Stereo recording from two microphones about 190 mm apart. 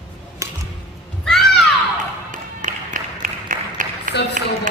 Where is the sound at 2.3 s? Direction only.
45° right (ahead or behind).